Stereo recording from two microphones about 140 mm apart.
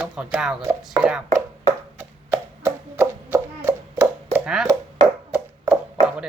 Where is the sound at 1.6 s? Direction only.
20° right (ahead or behind).